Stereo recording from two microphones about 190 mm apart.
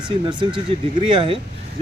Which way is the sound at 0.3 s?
25° right (ahead or behind).